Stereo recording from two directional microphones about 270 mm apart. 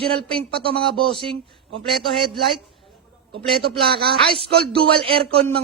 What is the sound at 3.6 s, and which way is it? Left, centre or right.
Speech, right.